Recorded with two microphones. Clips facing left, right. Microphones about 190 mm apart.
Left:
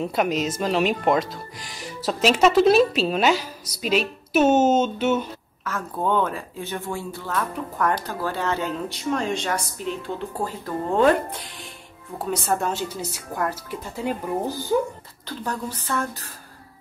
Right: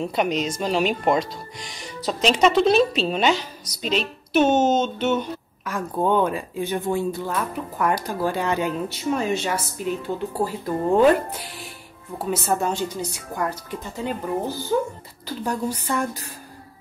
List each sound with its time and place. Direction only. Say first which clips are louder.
0.0 s speech: even; 5° left (ahead or behind)
5.7 s speech: right 3 dB; 15° right (ahead or behind); by 14.1 s 5° left (ahead or behind)
15.2 s speech: right 4 dB; 10° right (ahead or behind)